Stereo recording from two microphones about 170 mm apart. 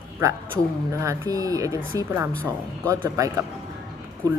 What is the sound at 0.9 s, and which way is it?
A woman's voice, 20° right (ahead or behind).